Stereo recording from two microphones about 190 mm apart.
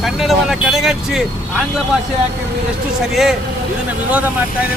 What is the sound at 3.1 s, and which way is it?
Speech, centre (ahead or behind).